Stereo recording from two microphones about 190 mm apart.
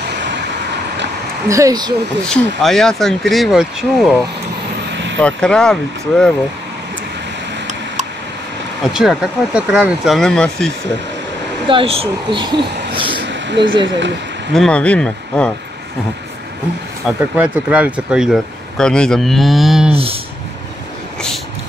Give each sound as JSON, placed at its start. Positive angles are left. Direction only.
{"t": 1.5, "sound": "speech", "side_deg": -20}
{"t": 2.2, "sound": "speech", "side_deg": 0}
{"t": 5.2, "sound": "speech", "side_deg": 5}
{"t": 8.8, "sound": "speech", "side_deg": 0}
{"t": 11.6, "sound": "speech", "side_deg": -30}
{"t": 13.2, "sound": "a sound", "side_deg": -70}
{"t": 13.8, "sound": "speech", "side_deg": -70}
{"t": 14.5, "sound": "speech", "side_deg": 5}
{"t": 17.0, "sound": "speech", "side_deg": -5}
{"t": 19.9, "sound": "a sound", "side_deg": -30}